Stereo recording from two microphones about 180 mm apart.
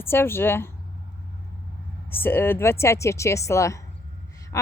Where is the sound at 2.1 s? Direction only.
10° left (ahead or behind).